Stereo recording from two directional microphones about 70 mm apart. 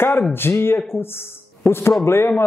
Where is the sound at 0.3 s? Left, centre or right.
Left.